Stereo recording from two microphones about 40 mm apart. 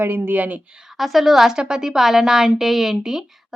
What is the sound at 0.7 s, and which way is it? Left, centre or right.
Speech, centre.